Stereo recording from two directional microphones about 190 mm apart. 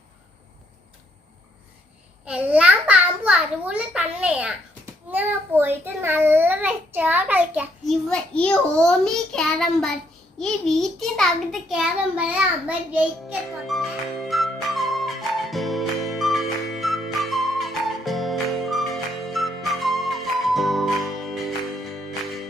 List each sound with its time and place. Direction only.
2.2 s a child's voice: 10° right (ahead or behind)
8.1 s a child's voice: 5° left (ahead or behind)
13.7 s music: centre (ahead or behind)